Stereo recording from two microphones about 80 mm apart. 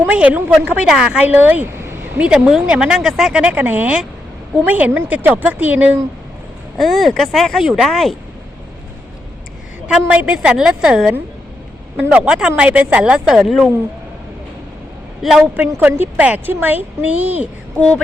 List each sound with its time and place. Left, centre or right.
0.0 s a woman's voice: centre
0.9 s speech: centre
1.2 s speech: right
3.4 s a woman's voice: right
6.7 s speech: centre
10.1 s speech: centre
15.2 s speech: centre
15.5 s a woman's voice: right
17.7 s a sound: centre